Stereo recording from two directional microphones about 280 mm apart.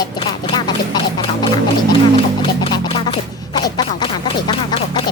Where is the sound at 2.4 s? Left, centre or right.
Centre.